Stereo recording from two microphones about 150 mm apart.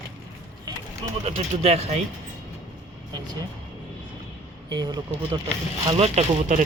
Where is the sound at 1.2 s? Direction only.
45° right (ahead or behind).